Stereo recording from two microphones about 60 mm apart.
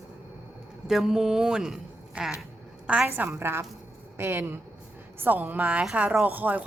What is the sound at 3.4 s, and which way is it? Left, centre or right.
A woman's voice, right.